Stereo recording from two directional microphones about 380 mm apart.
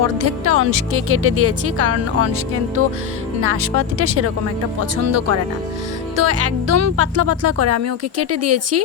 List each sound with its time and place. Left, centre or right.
0.0 s speech: right
3.4 s speech: right